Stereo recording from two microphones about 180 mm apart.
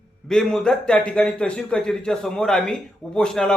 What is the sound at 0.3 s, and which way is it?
A man's voice, centre (ahead or behind).